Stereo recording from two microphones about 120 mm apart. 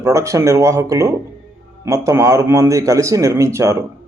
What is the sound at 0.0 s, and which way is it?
A man's voice, 25° right (ahead or behind).